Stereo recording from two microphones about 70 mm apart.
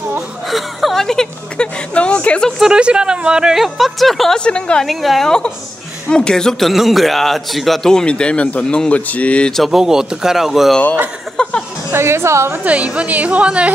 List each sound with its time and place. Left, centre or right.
0.5 s a man's voice: centre
2.6 s speech: centre
4.5 s a man's voice: centre
4.8 s a man's voice: centre
6.7 s a man's voice: centre
9.6 s speech: centre
11.4 s a man's voice: centre
11.9 s a woman's voice: right
12.6 s a woman's voice: centre